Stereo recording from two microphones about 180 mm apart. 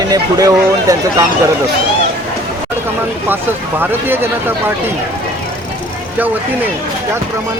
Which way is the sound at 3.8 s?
10° right (ahead or behind).